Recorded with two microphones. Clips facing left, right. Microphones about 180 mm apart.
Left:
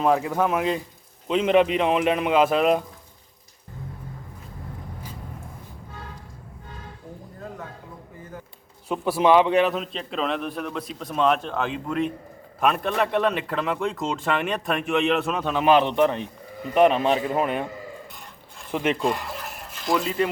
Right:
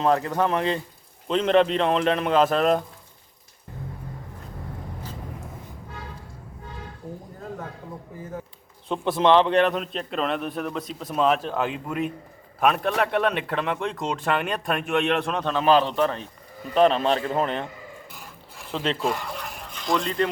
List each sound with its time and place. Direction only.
0.0 s speech: 10° left (ahead or behind)
8.9 s a man's voice: 5° left (ahead or behind)
15.6 s a man's voice: 20° left (ahead or behind)
18.7 s speech: 15° left (ahead or behind)
18.9 s speech: centre (ahead or behind)